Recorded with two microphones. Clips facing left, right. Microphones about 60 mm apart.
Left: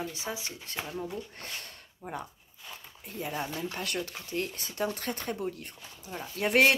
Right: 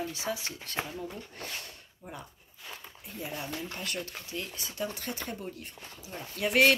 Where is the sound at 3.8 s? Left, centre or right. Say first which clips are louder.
Left 2 dB; left.